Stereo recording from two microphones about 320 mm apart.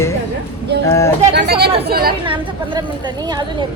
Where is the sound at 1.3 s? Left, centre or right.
Right.